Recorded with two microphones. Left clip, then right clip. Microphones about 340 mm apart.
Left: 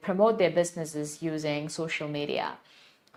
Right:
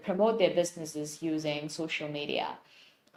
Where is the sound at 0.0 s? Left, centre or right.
Left.